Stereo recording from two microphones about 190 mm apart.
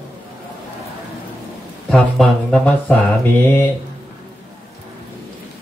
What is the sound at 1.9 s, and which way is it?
Mantra, 5° left (ahead or behind).